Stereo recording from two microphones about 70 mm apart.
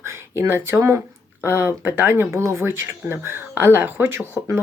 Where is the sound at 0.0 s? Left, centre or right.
Right.